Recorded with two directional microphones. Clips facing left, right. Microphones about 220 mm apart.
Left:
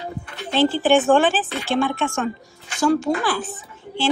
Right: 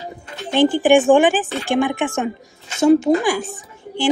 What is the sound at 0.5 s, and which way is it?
A woman's voice, 15° right (ahead or behind).